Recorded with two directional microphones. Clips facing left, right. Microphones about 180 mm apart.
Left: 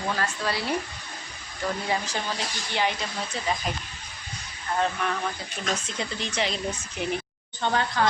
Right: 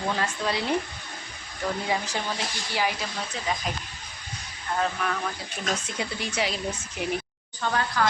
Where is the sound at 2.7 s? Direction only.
5° right (ahead or behind).